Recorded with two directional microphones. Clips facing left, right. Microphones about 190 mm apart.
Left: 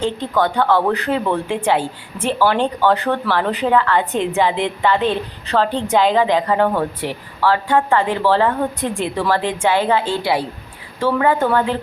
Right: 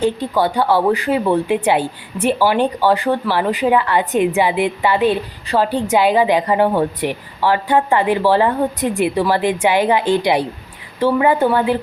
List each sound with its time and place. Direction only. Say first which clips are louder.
0.0 s a woman's voice: right 2 dB; 10° right (ahead or behind)